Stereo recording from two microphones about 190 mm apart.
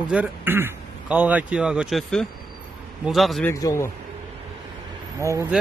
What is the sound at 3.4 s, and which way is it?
Speech, 15° left (ahead or behind).